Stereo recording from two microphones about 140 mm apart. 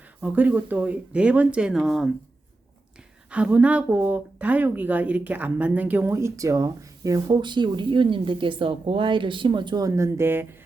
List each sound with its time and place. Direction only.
0.2 s speech: 10° right (ahead or behind)
3.2 s speech: 10° right (ahead or behind)